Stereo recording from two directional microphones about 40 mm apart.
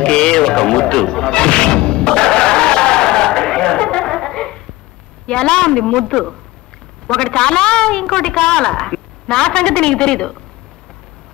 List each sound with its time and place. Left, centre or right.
0.0 s music: left
3.9 s a sound: centre
5.2 s a woman's voice: left